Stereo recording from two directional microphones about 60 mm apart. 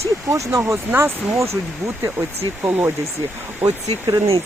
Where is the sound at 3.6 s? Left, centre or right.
Right.